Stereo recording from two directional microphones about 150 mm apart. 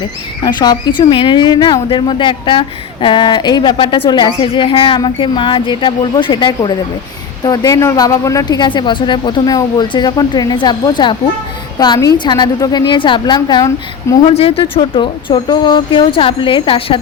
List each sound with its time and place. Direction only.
0.4 s a woman's voice: 25° left (ahead or behind)
14.3 s a woman's voice: 40° left (ahead or behind)